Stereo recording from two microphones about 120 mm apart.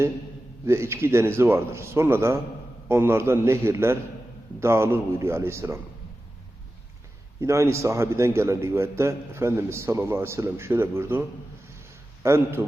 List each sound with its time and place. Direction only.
0.6 s a man's voice: 25° right (ahead or behind)
7.4 s a man's voice: 25° right (ahead or behind)
11.8 s a sound: 20° right (ahead or behind)